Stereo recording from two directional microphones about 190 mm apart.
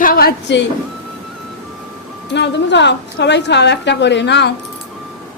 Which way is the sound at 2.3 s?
65° left (ahead or behind).